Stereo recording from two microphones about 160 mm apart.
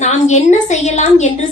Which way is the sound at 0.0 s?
45° left (ahead or behind).